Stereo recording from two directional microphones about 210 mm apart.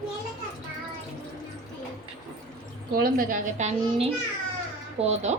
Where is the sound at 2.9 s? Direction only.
45° right (ahead or behind).